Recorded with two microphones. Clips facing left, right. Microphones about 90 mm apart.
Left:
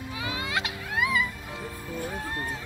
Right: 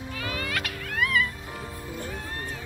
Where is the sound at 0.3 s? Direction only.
20° left (ahead or behind).